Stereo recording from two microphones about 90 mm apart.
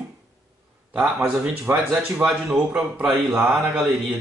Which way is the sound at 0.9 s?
5° right (ahead or behind).